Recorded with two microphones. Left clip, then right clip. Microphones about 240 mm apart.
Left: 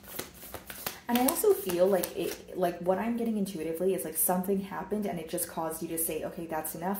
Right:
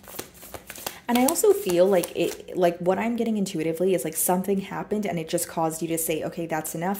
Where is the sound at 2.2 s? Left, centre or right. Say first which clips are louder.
Right 8 dB; right.